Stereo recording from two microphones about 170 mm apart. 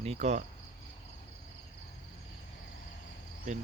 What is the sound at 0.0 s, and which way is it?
Speech, 40° right (ahead or behind).